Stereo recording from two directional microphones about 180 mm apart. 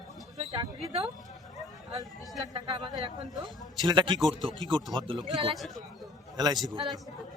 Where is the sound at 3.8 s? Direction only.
25° right (ahead or behind).